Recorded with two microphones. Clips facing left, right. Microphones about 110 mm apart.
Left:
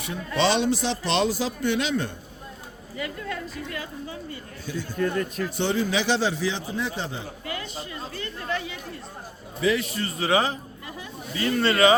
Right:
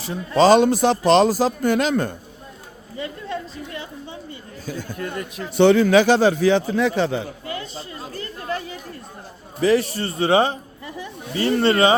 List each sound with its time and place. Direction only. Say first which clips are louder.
0.0 s speech: right 7 dB; 35° right (ahead or behind)
3.0 s speech: right 3 dB; 30° right (ahead or behind)
4.6 s speech: right 2 dB; 45° right (ahead or behind)
4.9 s speech: left 7 dB; 10° right (ahead or behind)
5.5 s speech: right 12 dB; 70° right (ahead or behind)
6.0 s a man's voice: right 9 dB; 50° right (ahead or behind); by 7.3 s 75° right (ahead or behind)
7.4 s chatter: right 3 dB; 30° right (ahead or behind)
9.6 s a man's voice: right 6 dB; 40° right (ahead or behind)